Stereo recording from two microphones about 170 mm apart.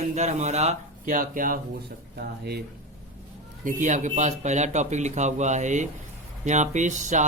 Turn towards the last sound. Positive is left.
turn(degrees=-45)  # may be behind; listen again after turning